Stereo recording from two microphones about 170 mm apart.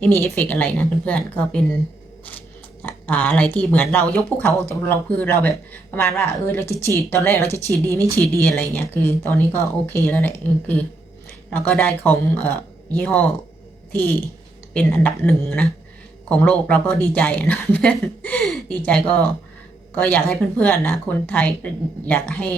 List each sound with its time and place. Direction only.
0.0 s a woman's voice: 10° left (ahead or behind)
2.8 s a woman's voice: 10° left (ahead or behind)
7.9 s speech: 20° right (ahead or behind)
8.2 s a woman's voice: 15° left (ahead or behind)